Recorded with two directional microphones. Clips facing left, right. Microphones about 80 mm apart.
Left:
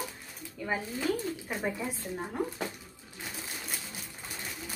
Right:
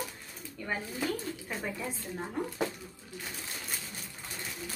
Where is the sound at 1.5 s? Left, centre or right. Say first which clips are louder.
Left 3 dB; centre.